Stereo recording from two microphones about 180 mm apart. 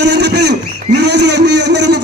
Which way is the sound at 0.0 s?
70° right (ahead or behind).